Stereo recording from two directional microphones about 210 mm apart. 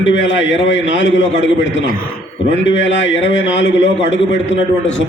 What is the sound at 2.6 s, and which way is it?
A man's voice, 60° left (ahead or behind).